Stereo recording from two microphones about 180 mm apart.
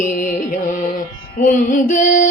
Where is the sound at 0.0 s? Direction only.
45° left (ahead or behind).